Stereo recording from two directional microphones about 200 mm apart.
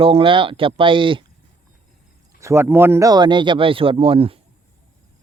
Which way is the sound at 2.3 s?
15° right (ahead or behind).